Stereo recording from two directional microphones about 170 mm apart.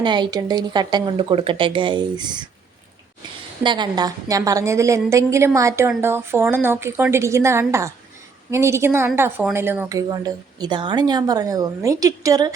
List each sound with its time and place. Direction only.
0.0 s speech: 25° right (ahead or behind)
3.6 s a woman's voice: 25° right (ahead or behind)
10.1 s speech: 25° right (ahead or behind)